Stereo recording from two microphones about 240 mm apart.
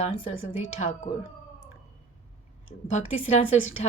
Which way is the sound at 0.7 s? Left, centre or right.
Left.